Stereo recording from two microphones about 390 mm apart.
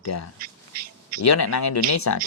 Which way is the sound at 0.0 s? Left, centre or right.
Left.